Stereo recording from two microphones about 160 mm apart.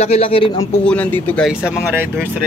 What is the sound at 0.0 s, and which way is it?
Speech, 40° left (ahead or behind).